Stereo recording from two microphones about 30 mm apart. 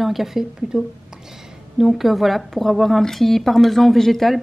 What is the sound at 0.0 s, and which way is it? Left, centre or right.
Speech, centre.